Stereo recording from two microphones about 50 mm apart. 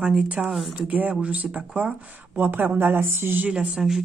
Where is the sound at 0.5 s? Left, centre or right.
Centre.